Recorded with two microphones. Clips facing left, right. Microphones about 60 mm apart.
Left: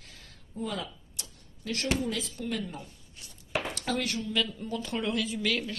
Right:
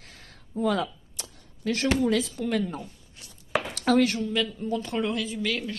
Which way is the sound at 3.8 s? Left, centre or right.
Right.